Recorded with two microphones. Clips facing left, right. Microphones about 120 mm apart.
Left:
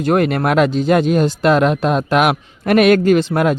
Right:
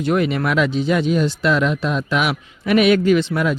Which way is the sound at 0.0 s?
50° left (ahead or behind).